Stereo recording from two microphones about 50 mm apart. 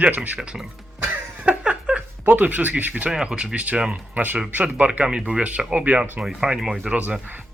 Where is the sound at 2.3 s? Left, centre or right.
Right.